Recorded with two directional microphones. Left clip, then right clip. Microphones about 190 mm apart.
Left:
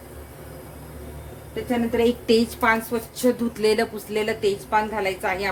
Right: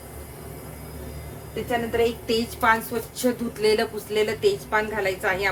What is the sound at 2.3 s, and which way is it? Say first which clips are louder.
A woman's voice: left 2 dB; 35° left (ahead or behind).